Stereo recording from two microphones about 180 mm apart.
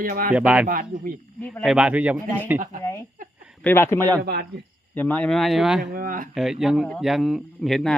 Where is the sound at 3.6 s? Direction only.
10° left (ahead or behind).